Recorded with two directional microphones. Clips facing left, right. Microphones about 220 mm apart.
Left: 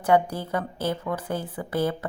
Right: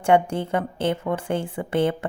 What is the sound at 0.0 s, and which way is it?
A woman's voice, 25° right (ahead or behind).